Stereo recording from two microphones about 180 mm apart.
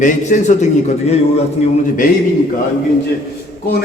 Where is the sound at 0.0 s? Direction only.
45° left (ahead or behind).